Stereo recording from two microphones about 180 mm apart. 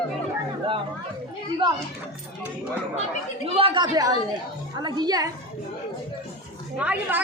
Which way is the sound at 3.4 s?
30° right (ahead or behind).